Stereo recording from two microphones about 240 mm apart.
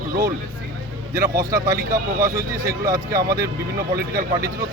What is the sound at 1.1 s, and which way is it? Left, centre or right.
Speech, centre.